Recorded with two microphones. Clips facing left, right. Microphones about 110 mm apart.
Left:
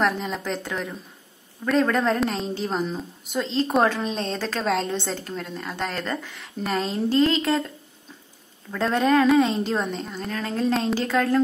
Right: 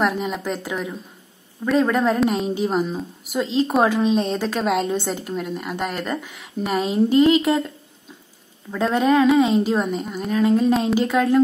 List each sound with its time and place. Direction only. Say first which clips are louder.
0.0 s a woman's voice: right 2 dB; 5° right (ahead or behind)
8.7 s a woman's voice: right 2 dB; 5° right (ahead or behind)